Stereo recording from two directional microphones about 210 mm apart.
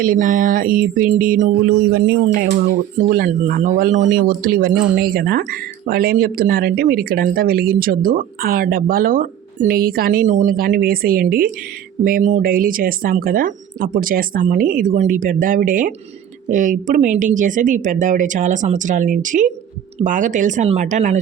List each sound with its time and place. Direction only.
0.0 s speech: 40° right (ahead or behind)
3.1 s speech: 40° right (ahead or behind)
4.7 s speech: 5° right (ahead or behind)
4.9 s speech: 45° right (ahead or behind)